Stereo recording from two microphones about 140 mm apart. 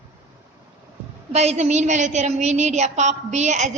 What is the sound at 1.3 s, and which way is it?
A woman's voice, 50° right (ahead or behind).